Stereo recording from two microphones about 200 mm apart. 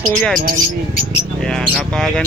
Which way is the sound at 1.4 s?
5° left (ahead or behind).